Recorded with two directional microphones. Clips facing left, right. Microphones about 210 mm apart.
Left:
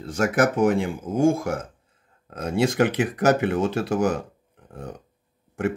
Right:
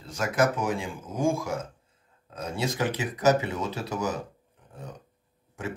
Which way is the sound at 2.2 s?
60° left (ahead or behind).